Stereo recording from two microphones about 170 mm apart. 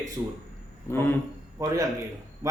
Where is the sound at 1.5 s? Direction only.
20° right (ahead or behind).